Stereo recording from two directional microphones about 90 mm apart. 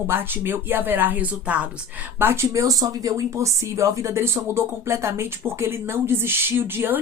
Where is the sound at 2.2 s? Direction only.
30° right (ahead or behind).